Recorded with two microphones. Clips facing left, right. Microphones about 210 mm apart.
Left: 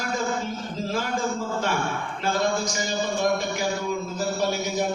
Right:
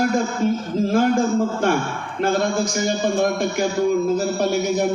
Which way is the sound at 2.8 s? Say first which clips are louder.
Right 7 dB; 55° right (ahead or behind).